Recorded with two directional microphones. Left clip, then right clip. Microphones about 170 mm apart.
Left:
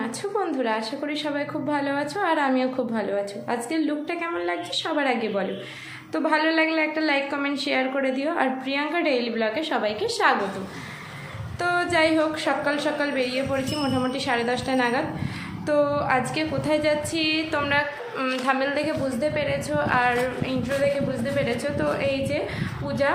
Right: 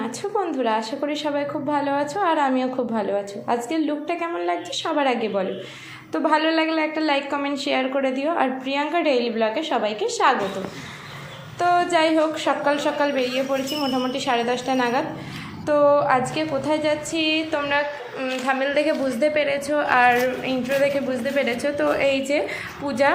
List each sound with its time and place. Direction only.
0.0 s a woman's voice: 5° right (ahead or behind)
11.6 s a woman's voice: 5° right (ahead or behind)
18.8 s a woman's voice: 15° right (ahead or behind)